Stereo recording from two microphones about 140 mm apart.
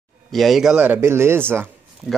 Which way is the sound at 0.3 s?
Centre (ahead or behind).